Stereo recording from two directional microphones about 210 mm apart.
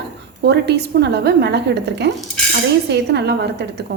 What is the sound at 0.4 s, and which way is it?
A woman's voice, 50° right (ahead or behind).